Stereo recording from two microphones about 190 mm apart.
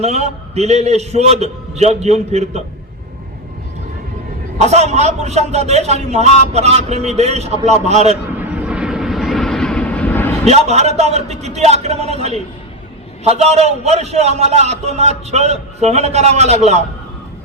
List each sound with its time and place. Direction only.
0.0 s speech: 35° right (ahead or behind)
4.5 s speech: 35° right (ahead or behind)
8.4 s vehicle: 5° right (ahead or behind)
10.4 s speech: 35° right (ahead or behind)